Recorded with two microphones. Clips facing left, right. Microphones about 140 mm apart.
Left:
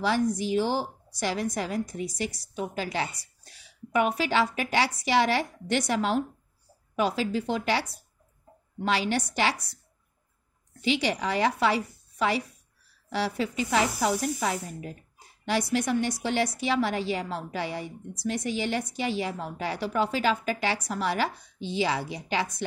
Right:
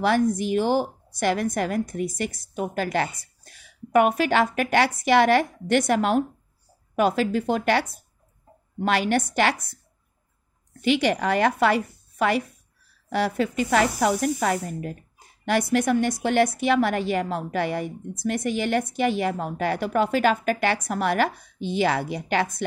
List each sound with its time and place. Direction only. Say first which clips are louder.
0.0 s speech: right 4 dB; 55° right (ahead or behind)
10.8 s speech: right 5 dB; 55° right (ahead or behind)